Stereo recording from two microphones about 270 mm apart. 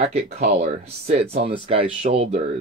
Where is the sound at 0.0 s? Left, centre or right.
Right.